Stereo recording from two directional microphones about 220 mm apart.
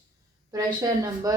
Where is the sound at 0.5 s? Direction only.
15° right (ahead or behind).